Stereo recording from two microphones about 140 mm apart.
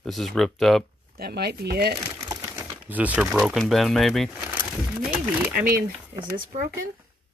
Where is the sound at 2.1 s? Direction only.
25° right (ahead or behind).